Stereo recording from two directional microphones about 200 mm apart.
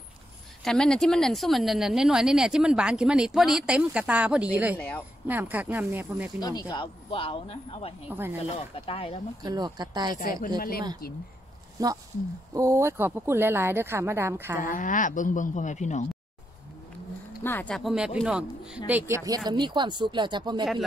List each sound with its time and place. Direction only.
0.7 s speech: 5° left (ahead or behind)
4.7 s speech: 10° left (ahead or behind)
5.2 s speech: 10° right (ahead or behind)
6.7 s speech: 25° left (ahead or behind)
8.1 s speech: 10° right (ahead or behind)
8.5 s speech: 30° left (ahead or behind)
9.4 s speech: 20° right (ahead or behind)
10.1 s speech: 45° left (ahead or behind)
11.8 s speech: 15° right (ahead or behind)
14.6 s speech: 40° left (ahead or behind)
17.4 s speech: 10° left (ahead or behind); by 20.6 s 20° right (ahead or behind)